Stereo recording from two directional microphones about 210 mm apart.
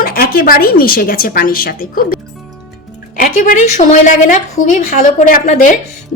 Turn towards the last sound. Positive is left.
turn(degrees=40)  # may be behind; listen again after turning